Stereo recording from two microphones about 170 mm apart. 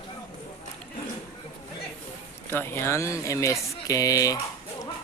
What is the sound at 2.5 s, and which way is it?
Speech, 15° left (ahead or behind).